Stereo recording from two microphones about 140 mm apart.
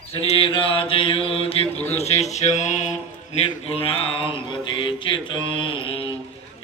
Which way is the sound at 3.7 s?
45° left (ahead or behind).